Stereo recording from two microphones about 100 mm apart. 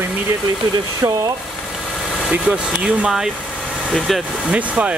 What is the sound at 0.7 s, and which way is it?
Speech, 35° right (ahead or behind).